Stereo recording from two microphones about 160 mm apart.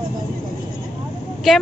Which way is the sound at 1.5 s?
Centre (ahead or behind).